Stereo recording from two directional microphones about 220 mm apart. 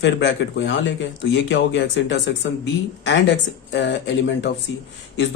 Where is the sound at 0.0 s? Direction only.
55° left (ahead or behind).